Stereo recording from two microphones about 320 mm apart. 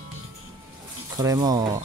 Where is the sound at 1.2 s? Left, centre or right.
Centre.